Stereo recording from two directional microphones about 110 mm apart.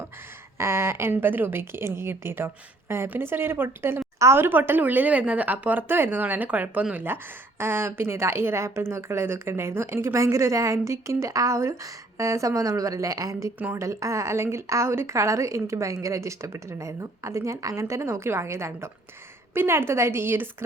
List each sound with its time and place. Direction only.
0.6 s speech: 25° right (ahead or behind)